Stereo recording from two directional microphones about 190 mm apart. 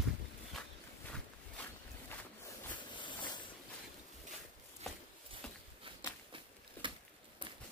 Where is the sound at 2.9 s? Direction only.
25° left (ahead or behind).